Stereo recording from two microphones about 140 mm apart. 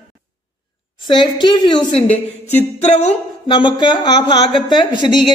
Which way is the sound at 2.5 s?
50° left (ahead or behind).